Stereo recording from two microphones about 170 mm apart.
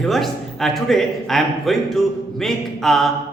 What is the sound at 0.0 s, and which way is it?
A man's voice, centre (ahead or behind).